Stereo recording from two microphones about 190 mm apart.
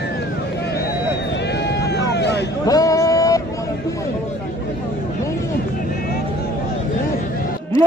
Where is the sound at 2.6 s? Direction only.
20° left (ahead or behind).